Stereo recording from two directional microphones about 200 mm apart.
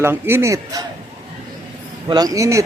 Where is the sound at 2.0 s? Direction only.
20° right (ahead or behind).